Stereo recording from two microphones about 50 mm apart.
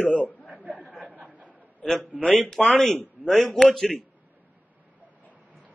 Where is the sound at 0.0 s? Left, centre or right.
Left.